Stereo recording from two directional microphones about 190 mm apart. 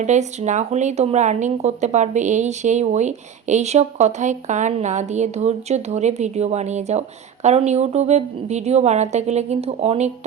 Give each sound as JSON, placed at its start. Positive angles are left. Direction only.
{"t": 0.0, "sound": "speech", "side_deg": -35}